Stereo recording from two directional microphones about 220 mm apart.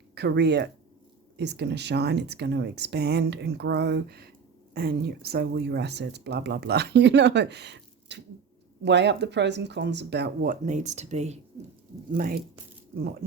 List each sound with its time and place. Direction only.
0.1 s speech: 50° right (ahead or behind); by 11.3 s 30° right (ahead or behind)
12.1 s speech: 40° right (ahead or behind)